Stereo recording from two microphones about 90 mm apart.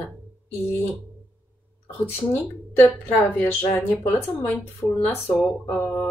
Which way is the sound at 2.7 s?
20° left (ahead or behind).